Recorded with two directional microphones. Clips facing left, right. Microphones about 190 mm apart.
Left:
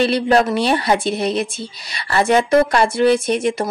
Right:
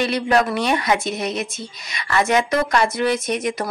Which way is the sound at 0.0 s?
30° left (ahead or behind).